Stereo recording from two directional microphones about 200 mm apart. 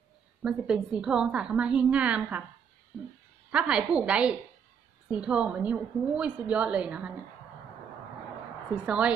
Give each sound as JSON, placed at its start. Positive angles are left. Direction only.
{"t": 0.4, "sound": "a woman's voice", "side_deg": -5}
{"t": 3.5, "sound": "a woman's voice", "side_deg": -5}
{"t": 8.7, "sound": "a woman's voice", "side_deg": -5}